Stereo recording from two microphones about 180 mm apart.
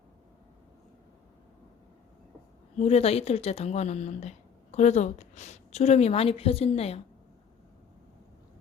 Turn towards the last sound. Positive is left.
turn(degrees=35)  # may be behind; listen again after turning